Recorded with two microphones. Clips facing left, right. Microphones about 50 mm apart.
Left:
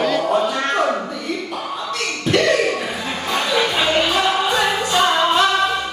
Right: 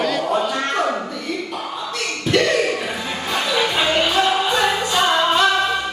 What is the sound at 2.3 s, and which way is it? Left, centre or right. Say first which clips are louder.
Cough: left 1 dB; centre.